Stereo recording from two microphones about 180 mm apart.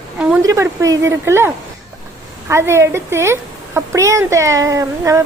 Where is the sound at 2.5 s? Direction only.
15° right (ahead or behind).